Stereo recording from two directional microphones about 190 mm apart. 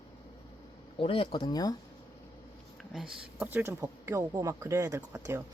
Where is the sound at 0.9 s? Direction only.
30° left (ahead or behind).